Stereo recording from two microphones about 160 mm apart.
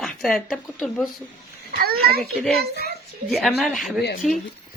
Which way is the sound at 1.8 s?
70° right (ahead or behind).